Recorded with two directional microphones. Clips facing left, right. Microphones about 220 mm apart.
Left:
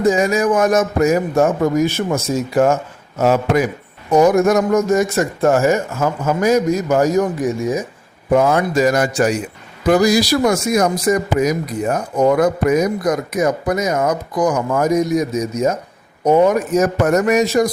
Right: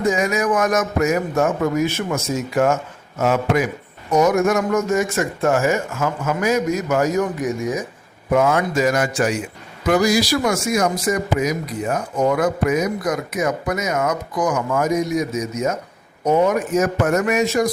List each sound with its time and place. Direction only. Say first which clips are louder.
0.1 s speech: left 3 dB; 30° left (ahead or behind)